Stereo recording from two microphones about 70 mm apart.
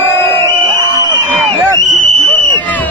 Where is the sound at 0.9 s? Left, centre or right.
Right.